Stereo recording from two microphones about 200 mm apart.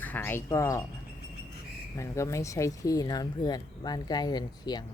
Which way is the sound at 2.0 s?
15° left (ahead or behind).